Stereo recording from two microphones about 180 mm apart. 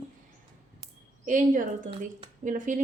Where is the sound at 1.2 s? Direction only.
45° right (ahead or behind).